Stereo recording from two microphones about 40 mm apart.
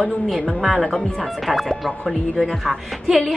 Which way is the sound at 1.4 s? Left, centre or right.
Centre.